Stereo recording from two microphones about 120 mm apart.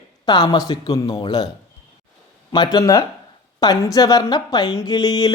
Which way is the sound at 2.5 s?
35° left (ahead or behind).